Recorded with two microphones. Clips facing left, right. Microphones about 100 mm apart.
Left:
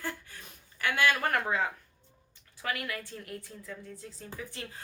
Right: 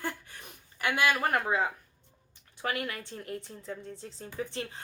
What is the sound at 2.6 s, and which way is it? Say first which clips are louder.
A woman's voice: right 2 dB; 30° right (ahead or behind).